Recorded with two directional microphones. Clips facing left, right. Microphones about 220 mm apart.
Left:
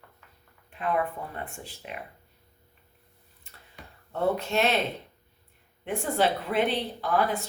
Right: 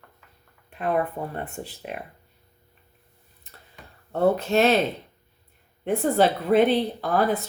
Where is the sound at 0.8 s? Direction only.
45° right (ahead or behind).